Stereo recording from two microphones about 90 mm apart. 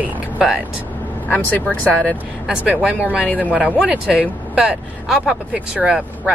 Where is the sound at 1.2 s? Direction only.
20° left (ahead or behind).